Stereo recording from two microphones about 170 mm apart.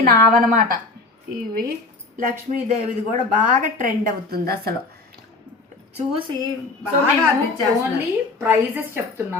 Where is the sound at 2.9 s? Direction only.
45° right (ahead or behind); by 4.7 s 65° right (ahead or behind).